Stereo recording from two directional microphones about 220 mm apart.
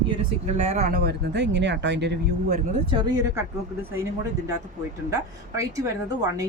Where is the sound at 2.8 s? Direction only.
20° right (ahead or behind).